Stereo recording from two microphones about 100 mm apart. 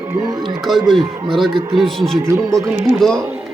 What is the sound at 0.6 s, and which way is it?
Speech, centre (ahead or behind).